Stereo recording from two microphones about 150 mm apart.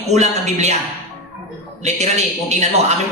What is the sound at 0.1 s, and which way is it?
Speech, 50° right (ahead or behind).